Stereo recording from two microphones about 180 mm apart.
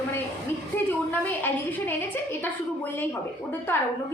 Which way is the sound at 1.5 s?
10° left (ahead or behind).